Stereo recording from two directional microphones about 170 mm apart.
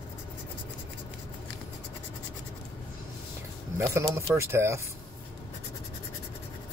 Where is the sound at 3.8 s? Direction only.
15° right (ahead or behind).